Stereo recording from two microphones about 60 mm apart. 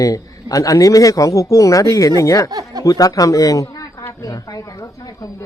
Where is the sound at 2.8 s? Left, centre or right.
Left.